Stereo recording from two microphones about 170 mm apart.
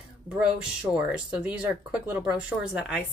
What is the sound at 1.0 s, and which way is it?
A woman's voice, 5° right (ahead or behind).